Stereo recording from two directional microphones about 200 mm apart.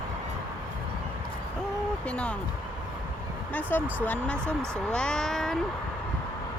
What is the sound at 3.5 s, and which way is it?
Speech, 10° left (ahead or behind).